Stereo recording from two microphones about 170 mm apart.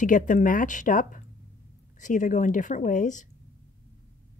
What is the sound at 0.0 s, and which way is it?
A woman's voice, 50° left (ahead or behind).